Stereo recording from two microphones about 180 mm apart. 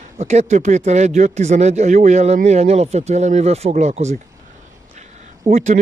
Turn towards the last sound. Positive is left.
turn(degrees=-40)  # may be behind; listen again after turning